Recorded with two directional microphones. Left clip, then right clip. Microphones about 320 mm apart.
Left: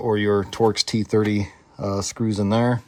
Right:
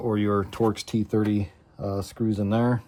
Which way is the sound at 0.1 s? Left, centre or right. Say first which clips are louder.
Left 6 dB; centre.